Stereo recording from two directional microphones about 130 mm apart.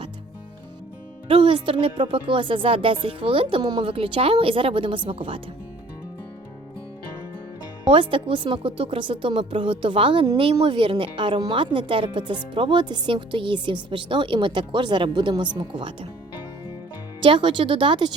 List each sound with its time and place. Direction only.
1.3 s speech: 40° right (ahead or behind)
7.9 s speech: 40° right (ahead or behind)
17.2 s speech: 40° right (ahead or behind)